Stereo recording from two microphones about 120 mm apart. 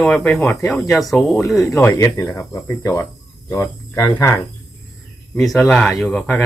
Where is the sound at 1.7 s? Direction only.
25° left (ahead or behind).